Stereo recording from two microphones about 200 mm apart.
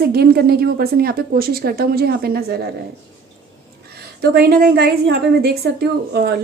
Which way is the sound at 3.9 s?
50° right (ahead or behind).